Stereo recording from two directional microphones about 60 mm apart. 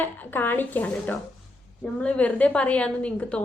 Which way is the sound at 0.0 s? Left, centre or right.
Left.